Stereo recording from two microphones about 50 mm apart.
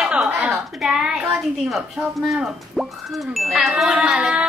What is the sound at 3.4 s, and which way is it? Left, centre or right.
A child's voice, centre.